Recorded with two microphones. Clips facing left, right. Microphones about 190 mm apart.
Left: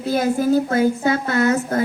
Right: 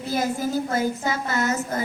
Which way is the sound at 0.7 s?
60° left (ahead or behind).